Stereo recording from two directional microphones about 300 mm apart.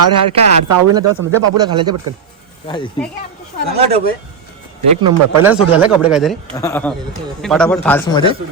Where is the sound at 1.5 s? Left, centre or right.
Centre.